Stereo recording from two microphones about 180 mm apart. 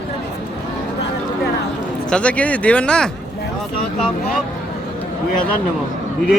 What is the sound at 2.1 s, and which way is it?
Speech, 5° left (ahead or behind).